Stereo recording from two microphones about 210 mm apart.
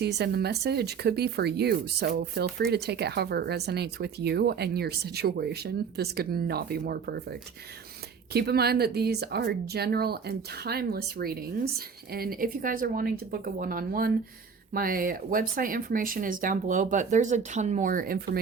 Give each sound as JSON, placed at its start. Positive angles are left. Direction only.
{"t": 0.0, "sound": "speech", "side_deg": -50}